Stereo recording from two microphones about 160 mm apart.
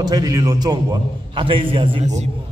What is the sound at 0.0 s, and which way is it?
A man's voice, 25° right (ahead or behind).